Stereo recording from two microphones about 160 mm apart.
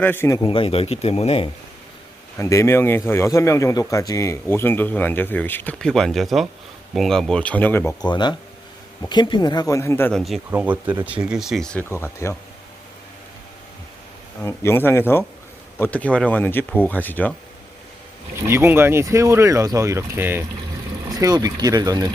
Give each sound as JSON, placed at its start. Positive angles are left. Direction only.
{"t": 0.0, "sound": "speech", "side_deg": 15}
{"t": 0.3, "sound": "speech", "side_deg": 35}
{"t": 2.4, "sound": "speech", "side_deg": 20}
{"t": 8.0, "sound": "speech", "side_deg": 25}
{"t": 10.5, "sound": "speech", "side_deg": -10}
{"t": 14.4, "sound": "speech", "side_deg": 15}
{"t": 18.4, "sound": "speech", "side_deg": -15}